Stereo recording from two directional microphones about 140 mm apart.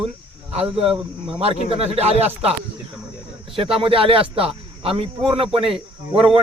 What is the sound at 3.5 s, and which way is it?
A man's voice, 40° right (ahead or behind).